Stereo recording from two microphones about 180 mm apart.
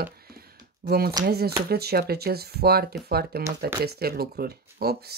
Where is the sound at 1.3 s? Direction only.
60° right (ahead or behind).